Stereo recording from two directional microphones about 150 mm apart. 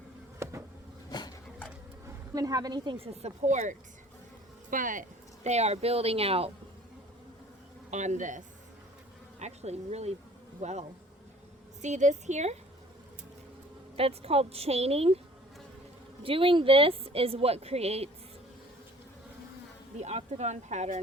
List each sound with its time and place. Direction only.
0.4 s a sound: 20° right (ahead or behind)
2.3 s speech: 25° right (ahead or behind); by 6.5 s 40° right (ahead or behind)
7.9 s speech: 50° right (ahead or behind)
9.4 s speech: 45° right (ahead or behind)
13.9 s speech: 40° right (ahead or behind)
16.2 s speech: 35° right (ahead or behind)
20.0 s speech: 50° right (ahead or behind)